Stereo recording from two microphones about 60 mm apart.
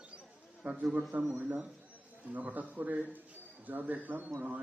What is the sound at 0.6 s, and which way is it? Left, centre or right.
A man's voice, centre.